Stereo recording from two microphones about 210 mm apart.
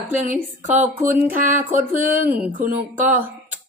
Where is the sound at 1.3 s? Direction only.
40° right (ahead or behind).